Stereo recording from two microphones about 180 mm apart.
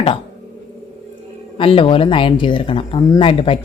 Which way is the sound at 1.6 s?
30° left (ahead or behind).